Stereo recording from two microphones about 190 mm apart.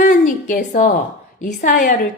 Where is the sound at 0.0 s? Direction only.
45° left (ahead or behind).